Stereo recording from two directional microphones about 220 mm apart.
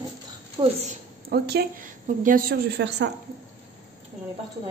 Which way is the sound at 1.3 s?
45° right (ahead or behind).